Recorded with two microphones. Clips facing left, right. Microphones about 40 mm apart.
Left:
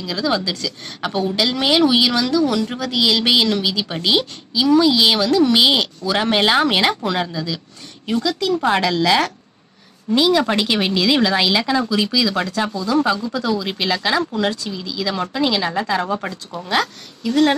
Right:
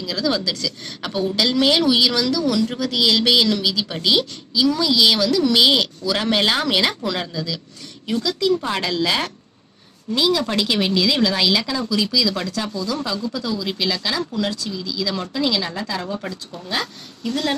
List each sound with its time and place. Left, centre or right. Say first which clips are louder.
0.0 s speech: left 1 dB; centre
8.2 s speech: left 1 dB; left
10.1 s speech: left 4 dB; left
16.5 s speech: left 7 dB; left
17.3 s speech: left 7 dB; left